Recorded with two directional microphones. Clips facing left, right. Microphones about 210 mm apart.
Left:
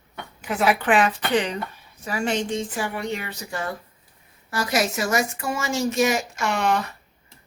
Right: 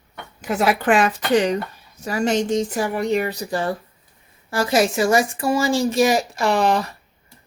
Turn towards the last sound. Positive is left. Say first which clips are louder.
# right 5 dB
turn(degrees=-35)  # may be behind; listen again after turning